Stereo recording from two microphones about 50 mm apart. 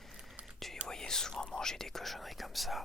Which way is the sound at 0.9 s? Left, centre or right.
Centre.